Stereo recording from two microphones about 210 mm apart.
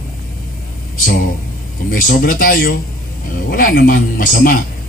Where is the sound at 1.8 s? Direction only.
45° left (ahead or behind).